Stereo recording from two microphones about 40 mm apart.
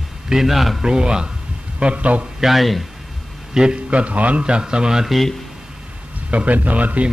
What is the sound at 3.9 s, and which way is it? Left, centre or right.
Speech, right.